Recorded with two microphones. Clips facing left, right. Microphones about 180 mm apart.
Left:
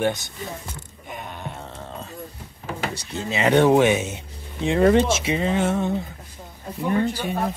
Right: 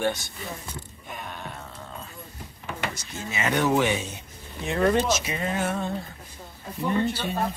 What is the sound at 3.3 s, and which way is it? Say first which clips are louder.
Speech: left 7 dB; 25° left (ahead or behind).